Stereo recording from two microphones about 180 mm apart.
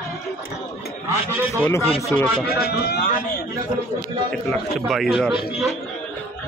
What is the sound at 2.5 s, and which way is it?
Speech, 60° left (ahead or behind).